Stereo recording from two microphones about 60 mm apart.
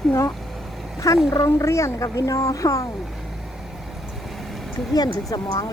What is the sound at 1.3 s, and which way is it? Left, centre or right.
Speech, left.